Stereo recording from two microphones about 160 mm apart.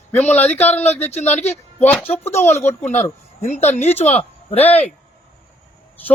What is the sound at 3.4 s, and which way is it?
Speech, 45° left (ahead or behind).